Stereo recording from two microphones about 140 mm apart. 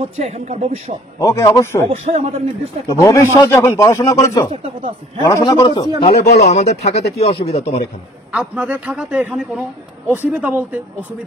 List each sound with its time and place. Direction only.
0.0 s speech: 50° right (ahead or behind)
1.2 s speech: 20° left (ahead or behind)
1.9 s speech: 50° right (ahead or behind)
2.9 s speech: 20° left (ahead or behind)
4.5 s speech: 40° right (ahead or behind)
5.2 s speech: 25° left (ahead or behind)
5.9 s speech: 45° left (ahead or behind)
8.3 s a man's voice: 10° right (ahead or behind)